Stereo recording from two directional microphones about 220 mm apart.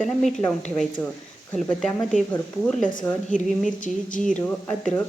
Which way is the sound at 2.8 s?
35° left (ahead or behind).